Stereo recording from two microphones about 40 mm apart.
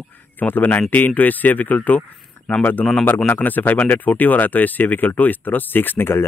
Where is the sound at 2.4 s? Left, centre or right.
Left.